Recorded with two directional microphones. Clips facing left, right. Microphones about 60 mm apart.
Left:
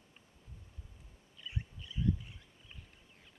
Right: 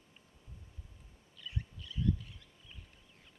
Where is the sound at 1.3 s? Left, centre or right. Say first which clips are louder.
Even; left.